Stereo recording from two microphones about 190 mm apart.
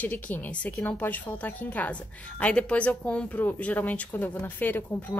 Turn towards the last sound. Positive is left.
turn(degrees=10)  # may be behind; listen again after turning